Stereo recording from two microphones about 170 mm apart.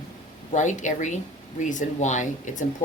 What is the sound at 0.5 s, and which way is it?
Speech, 45° left (ahead or behind).